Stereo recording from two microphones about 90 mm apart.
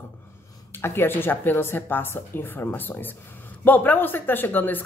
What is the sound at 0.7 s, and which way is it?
A man's voice, 25° left (ahead or behind).